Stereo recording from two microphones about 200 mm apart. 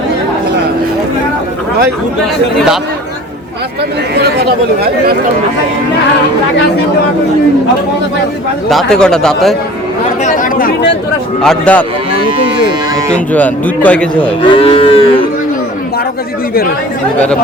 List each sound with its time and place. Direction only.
4.1 s speech: 55° right (ahead or behind)
8.7 s a man's voice: 5° left (ahead or behind)
10.2 s chatter: 40° left (ahead or behind)
11.4 s speech: 5° left (ahead or behind)
13.1 s speech: 5° left (ahead or behind)
14.5 s moo: 25° left (ahead or behind)